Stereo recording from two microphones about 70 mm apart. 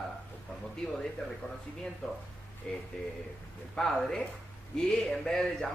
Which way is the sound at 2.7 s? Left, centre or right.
Centre.